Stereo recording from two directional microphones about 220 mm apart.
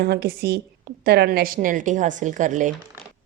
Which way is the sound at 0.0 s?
45° right (ahead or behind).